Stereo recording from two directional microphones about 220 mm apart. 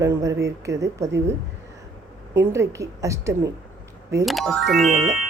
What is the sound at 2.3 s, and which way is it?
Speech, 10° right (ahead or behind).